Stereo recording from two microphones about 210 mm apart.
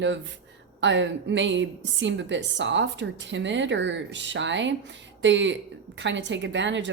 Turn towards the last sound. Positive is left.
turn(degrees=-60)  # may be behind; listen again after turning